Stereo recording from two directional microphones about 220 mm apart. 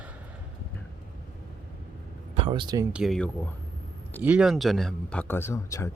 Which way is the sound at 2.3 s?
25° right (ahead or behind).